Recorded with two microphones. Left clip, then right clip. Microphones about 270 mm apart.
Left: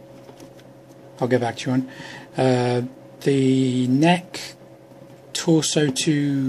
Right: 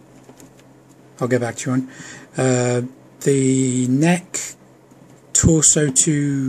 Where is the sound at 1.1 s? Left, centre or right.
Centre.